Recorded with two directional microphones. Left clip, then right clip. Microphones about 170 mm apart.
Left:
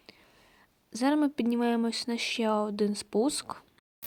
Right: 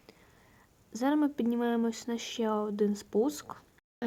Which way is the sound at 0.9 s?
25° left (ahead or behind).